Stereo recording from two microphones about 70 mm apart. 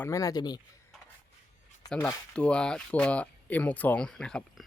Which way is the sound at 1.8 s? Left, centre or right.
Left.